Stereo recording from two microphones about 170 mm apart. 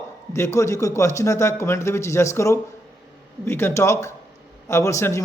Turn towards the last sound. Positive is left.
turn(degrees=15)  # may be behind; listen again after turning